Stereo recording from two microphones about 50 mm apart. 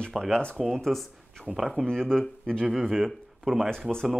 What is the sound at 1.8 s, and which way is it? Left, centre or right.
Speech, centre.